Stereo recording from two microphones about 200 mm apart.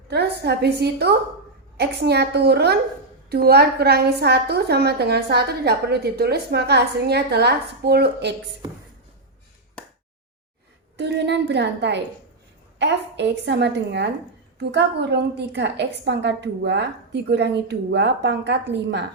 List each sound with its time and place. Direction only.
0.1 s a woman's voice: 55° right (ahead or behind)
10.9 s a woman's voice: 60° right (ahead or behind)